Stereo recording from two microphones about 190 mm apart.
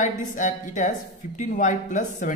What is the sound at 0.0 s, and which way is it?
A woman's voice, 40° left (ahead or behind).